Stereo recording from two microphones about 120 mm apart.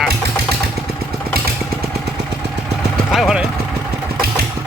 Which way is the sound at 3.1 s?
Centre (ahead or behind).